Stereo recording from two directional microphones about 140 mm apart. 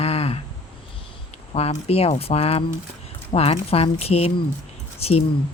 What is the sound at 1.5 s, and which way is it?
Speech, 45° left (ahead or behind).